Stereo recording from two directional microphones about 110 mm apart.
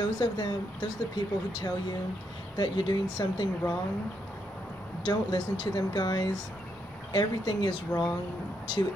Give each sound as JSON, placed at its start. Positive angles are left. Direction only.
{"t": 0.0, "sound": "speech", "side_deg": 40}
{"t": 5.0, "sound": "speech", "side_deg": 40}